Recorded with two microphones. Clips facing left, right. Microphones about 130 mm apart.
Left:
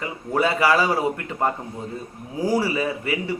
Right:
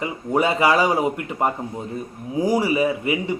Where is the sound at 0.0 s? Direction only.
20° right (ahead or behind).